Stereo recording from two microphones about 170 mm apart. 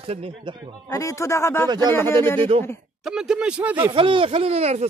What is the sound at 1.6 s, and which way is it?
Speech, 25° right (ahead or behind).